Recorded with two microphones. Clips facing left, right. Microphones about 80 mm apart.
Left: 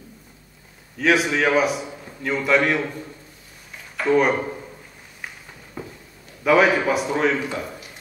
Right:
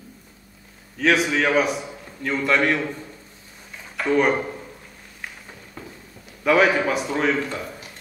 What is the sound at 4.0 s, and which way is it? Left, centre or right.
Speech, centre.